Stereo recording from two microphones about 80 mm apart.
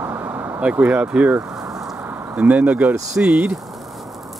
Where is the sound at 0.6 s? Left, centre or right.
Centre.